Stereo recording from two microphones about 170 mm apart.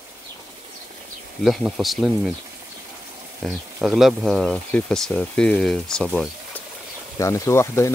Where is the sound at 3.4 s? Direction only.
Centre (ahead or behind).